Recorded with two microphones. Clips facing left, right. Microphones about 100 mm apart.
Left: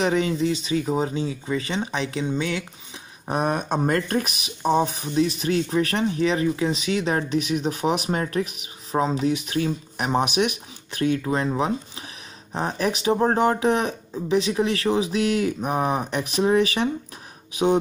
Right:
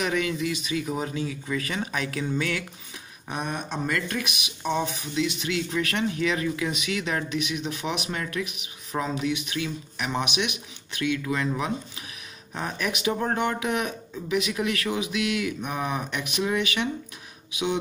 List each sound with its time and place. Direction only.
0.0 s speech: 30° left (ahead or behind)
3.3 s speech: 50° left (ahead or behind)